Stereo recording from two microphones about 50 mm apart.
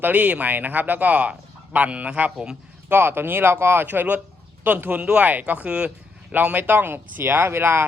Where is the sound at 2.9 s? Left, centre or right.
Right.